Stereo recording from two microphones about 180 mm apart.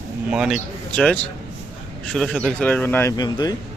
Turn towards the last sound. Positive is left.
turn(degrees=20)  # may be behind; listen again after turning